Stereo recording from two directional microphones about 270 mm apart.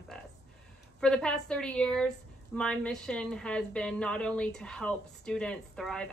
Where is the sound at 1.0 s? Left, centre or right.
Centre.